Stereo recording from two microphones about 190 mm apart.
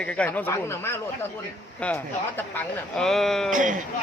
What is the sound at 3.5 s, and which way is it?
Speech, 40° right (ahead or behind).